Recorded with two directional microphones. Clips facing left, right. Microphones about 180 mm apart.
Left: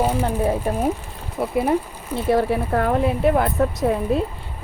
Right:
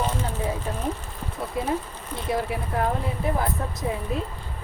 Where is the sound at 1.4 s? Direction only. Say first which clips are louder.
Left 9 dB; 60° left (ahead or behind).